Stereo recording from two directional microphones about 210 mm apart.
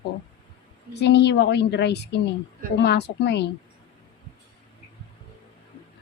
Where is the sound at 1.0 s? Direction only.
55° left (ahead or behind).